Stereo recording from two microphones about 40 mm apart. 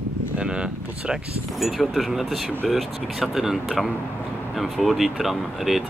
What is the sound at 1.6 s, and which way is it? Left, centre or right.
Speech, centre.